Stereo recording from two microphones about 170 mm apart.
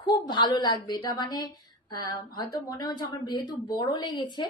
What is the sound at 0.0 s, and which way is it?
A woman's voice, 25° left (ahead or behind).